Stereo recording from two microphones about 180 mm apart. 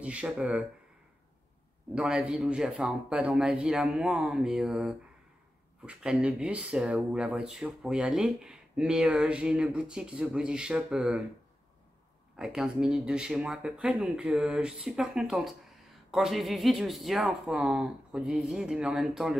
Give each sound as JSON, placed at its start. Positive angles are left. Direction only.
{"t": 0.0, "sound": "speech", "side_deg": -5}
{"t": 2.0, "sound": "speech", "side_deg": -5}
{"t": 12.4, "sound": "speech", "side_deg": -5}